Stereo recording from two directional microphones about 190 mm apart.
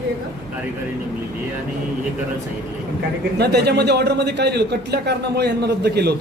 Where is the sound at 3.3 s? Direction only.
60° right (ahead or behind).